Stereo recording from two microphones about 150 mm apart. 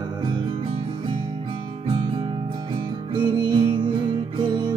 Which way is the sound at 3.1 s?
30° right (ahead or behind).